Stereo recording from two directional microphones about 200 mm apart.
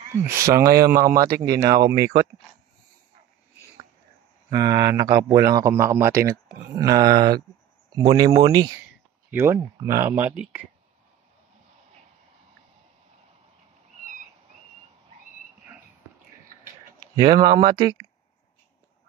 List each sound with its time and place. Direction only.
0.5 s speech: 15° right (ahead or behind)
4.5 s speech: 20° right (ahead or behind)
17.1 s speech: 25° right (ahead or behind)